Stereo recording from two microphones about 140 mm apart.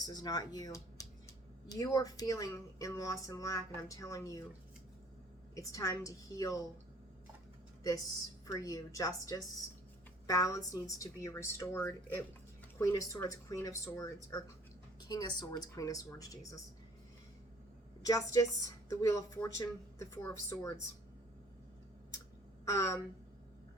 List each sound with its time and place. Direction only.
0.0 s a woman's voice: 30° left (ahead or behind)
5.5 s a woman's voice: 25° left (ahead or behind)
8.4 s a woman's voice: 25° left (ahead or behind)
18.0 s a woman's voice: 25° left (ahead or behind)
22.6 s speech: 20° left (ahead or behind)